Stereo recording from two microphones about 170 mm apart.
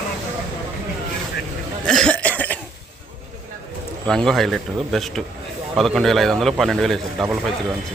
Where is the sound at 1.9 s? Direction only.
5° left (ahead or behind).